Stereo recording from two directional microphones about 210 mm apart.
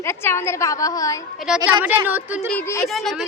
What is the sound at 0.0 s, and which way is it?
A woman's voice, 10° left (ahead or behind).